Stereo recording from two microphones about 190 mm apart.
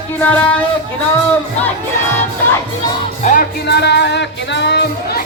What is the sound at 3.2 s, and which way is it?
Music, 40° left (ahead or behind).